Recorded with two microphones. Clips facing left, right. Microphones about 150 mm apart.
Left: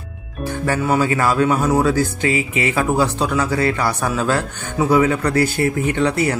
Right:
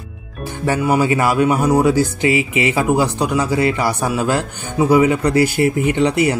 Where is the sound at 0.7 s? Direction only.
15° right (ahead or behind).